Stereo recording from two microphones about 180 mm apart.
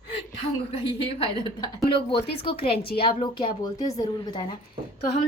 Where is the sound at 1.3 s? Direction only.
25° left (ahead or behind).